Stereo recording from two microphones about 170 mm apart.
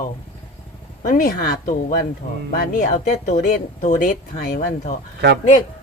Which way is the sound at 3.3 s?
50° left (ahead or behind).